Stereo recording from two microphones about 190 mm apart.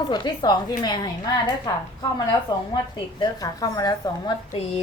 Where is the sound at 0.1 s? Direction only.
25° left (ahead or behind).